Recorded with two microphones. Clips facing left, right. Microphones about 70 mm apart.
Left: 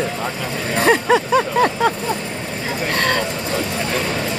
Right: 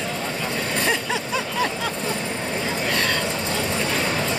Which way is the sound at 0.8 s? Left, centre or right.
Left.